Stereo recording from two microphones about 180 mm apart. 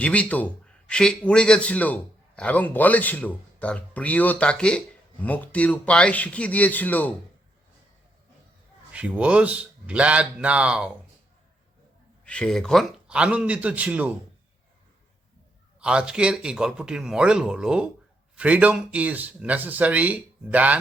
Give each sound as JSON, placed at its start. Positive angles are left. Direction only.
{"t": 0.0, "sound": "a man's voice", "side_deg": 5}
{"t": 8.9, "sound": "speech", "side_deg": -5}
{"t": 12.2, "sound": "speech", "side_deg": 5}
{"t": 15.8, "sound": "speech", "side_deg": -5}